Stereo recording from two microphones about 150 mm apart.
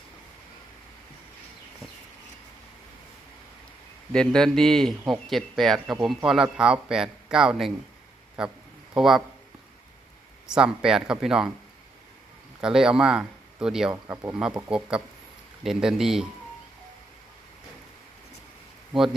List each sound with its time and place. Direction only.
4.1 s speech: 5° left (ahead or behind)
10.5 s speech: 5° right (ahead or behind)
12.6 s speech: 5° right (ahead or behind)
13.9 s speech: 20° right (ahead or behind)
14.7 s speech: 5° right (ahead or behind)